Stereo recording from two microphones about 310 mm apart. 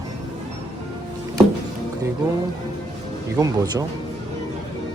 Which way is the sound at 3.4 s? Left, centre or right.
Centre.